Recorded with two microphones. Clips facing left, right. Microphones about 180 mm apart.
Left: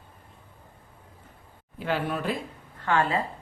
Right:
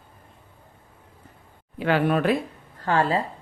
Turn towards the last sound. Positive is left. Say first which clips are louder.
# right 3 dB
turn(degrees=-35)  # may be behind; listen again after turning